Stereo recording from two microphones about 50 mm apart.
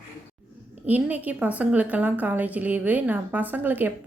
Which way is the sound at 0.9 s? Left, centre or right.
Right.